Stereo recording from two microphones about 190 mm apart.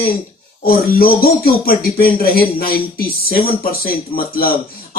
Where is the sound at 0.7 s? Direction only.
50° left (ahead or behind).